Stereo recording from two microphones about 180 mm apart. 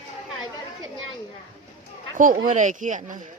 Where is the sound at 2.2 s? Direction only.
50° right (ahead or behind).